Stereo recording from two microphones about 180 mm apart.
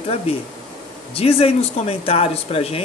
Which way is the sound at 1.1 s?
35° left (ahead or behind).